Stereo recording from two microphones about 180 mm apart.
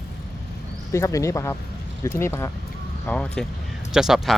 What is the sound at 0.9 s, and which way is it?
A man's voice, 15° left (ahead or behind).